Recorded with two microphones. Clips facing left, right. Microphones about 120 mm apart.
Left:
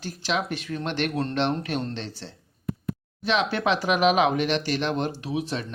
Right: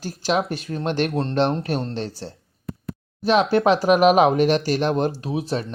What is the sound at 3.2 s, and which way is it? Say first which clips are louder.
Speech: right 7 dB; 40° right (ahead or behind).